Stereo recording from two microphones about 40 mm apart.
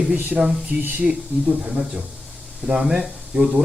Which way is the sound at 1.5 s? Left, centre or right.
Centre.